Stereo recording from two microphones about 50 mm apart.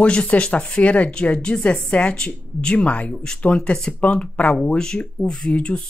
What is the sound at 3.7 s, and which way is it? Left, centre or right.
Speech, centre.